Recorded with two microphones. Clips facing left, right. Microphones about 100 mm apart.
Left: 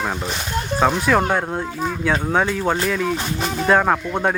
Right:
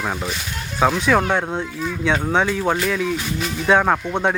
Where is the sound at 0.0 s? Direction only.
Centre (ahead or behind).